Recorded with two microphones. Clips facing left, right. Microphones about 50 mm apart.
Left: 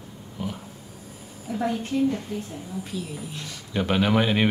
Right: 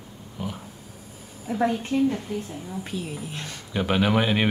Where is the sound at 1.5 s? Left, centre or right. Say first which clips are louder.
Right 4 dB; right.